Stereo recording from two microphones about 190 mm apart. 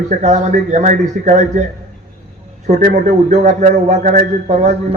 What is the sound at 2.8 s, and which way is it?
A man's voice, 45° right (ahead or behind).